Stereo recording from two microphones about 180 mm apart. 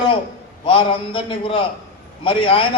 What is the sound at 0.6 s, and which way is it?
A man's voice, 30° left (ahead or behind).